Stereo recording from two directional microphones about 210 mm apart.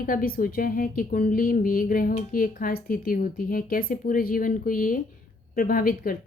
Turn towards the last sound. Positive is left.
turn(degrees=40)  # may be behind; listen again after turning